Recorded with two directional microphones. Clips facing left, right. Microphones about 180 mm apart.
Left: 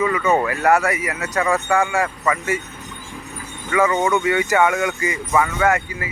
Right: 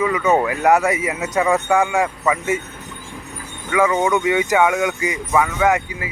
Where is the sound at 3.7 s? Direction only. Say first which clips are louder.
Right 1 dB; 5° right (ahead or behind).